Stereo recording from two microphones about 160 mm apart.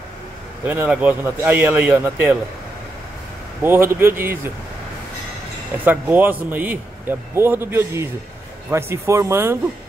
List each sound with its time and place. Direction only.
0.7 s a man's voice: 10° right (ahead or behind)
3.6 s a man's voice: 15° right (ahead or behind)
5.9 s a man's voice: 10° right (ahead or behind)